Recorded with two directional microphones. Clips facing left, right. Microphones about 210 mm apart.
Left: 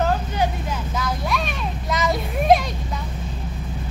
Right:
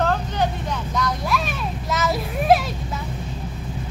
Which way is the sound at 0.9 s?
Centre (ahead or behind).